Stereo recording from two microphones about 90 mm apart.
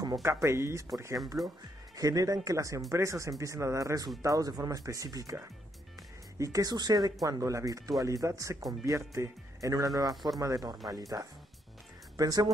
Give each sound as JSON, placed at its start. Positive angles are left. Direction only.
{"t": 0.2, "sound": "speech", "side_deg": -30}
{"t": 2.0, "sound": "speech", "side_deg": -40}